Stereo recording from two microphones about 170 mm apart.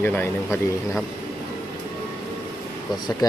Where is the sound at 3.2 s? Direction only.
20° left (ahead or behind).